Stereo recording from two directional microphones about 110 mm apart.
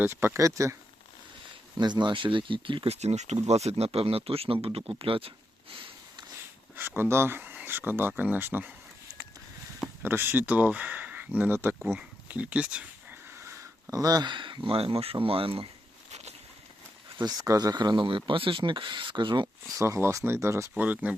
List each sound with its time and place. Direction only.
0.0 s speech: 20° right (ahead or behind)
1.8 s speech: 45° right (ahead or behind)
2.9 s speech: 85° right
3.4 s speech: 80° right; by 5.3 s 55° right (ahead or behind)
5.7 s sniff: 50° right (ahead or behind)
6.7 s speech: 20° right (ahead or behind)
10.0 s speech: 20° right (ahead or behind)
13.3 s speech: 25° right (ahead or behind); by 15.6 s 55° right (ahead or behind)
17.2 s speech: 35° right (ahead or behind)
19.7 s speech: 25° right (ahead or behind)
20.8 s speech: 15° right (ahead or behind)